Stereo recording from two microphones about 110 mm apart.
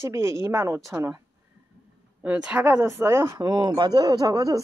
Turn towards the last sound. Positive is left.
turn(degrees=-35)  # may be behind; listen again after turning